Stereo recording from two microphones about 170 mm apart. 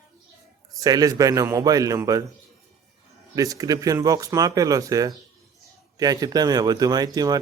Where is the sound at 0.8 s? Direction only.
20° right (ahead or behind).